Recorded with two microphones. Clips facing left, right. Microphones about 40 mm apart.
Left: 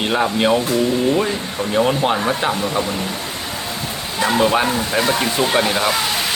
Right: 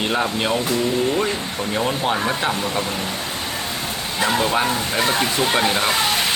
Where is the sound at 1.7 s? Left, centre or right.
Centre.